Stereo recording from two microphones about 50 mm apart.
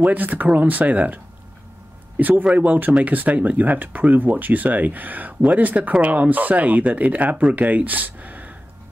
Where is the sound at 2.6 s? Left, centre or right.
Right.